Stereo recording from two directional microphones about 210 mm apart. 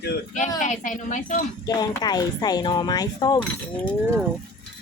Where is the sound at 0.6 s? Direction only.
35° left (ahead or behind).